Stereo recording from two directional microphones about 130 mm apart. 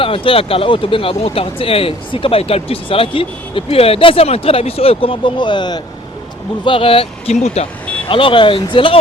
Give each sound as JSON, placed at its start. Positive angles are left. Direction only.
{"t": 0.0, "sound": "speech", "side_deg": 45}